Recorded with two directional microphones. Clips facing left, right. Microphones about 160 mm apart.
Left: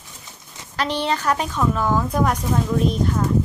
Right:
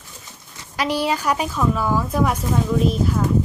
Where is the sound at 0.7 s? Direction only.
10° right (ahead or behind).